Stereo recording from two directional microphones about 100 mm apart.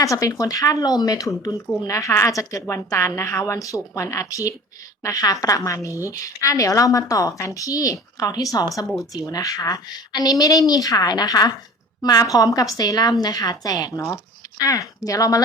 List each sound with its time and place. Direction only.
0.0 s a woman's voice: 35° left (ahead or behind)